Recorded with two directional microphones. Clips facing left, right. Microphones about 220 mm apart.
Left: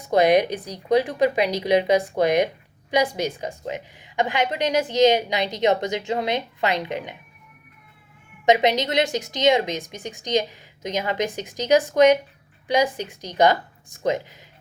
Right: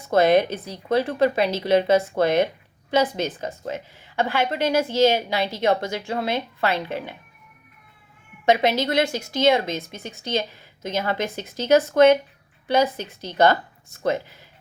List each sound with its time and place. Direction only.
0.0 s a woman's voice: 15° left (ahead or behind)
8.4 s a woman's voice: 15° left (ahead or behind)